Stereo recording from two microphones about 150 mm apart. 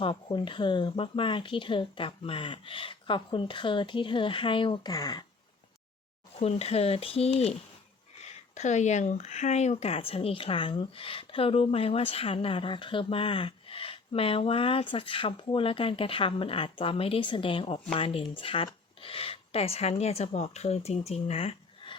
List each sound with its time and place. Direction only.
0.0 s speech: 35° left (ahead or behind)
6.4 s speech: 45° left (ahead or behind)